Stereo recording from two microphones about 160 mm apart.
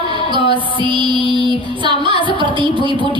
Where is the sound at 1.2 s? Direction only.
30° left (ahead or behind).